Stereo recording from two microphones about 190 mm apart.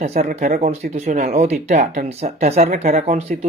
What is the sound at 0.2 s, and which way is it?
Speech, 40° right (ahead or behind).